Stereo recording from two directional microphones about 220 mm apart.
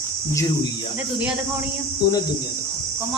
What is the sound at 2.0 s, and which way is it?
Speech, 20° left (ahead or behind).